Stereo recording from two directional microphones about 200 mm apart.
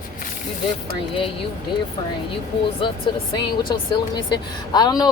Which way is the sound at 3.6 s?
25° left (ahead or behind).